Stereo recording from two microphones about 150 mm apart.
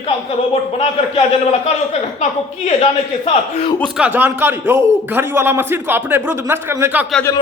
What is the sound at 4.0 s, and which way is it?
A man's voice, 10° right (ahead or behind).